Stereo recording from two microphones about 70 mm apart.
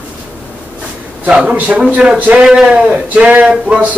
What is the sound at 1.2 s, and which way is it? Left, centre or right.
Speech, centre.